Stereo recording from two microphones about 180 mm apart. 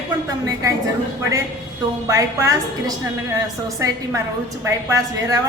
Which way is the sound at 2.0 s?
20° right (ahead or behind).